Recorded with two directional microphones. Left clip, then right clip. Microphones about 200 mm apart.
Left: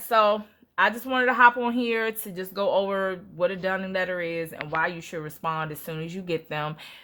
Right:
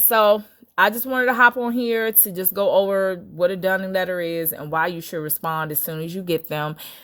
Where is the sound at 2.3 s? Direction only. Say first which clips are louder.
Right 6 dB; 50° right (ahead or behind).